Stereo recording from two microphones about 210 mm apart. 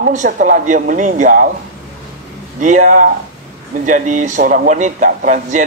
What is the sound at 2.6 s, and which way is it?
Speech, 35° right (ahead or behind).